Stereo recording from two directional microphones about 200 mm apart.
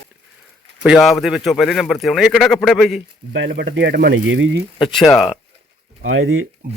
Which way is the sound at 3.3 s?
65° right (ahead or behind).